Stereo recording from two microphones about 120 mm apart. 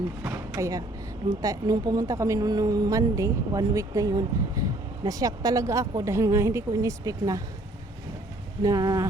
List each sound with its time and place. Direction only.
0.2 s a woman's voice: 20° right (ahead or behind)
8.6 s speech: 30° right (ahead or behind)